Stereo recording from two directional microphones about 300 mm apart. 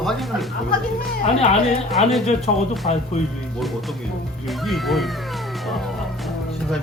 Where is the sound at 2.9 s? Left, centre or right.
Left.